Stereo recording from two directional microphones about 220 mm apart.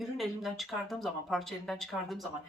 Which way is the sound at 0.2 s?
Centre (ahead or behind).